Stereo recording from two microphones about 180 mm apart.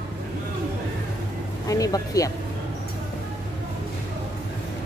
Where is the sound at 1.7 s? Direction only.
20° left (ahead or behind).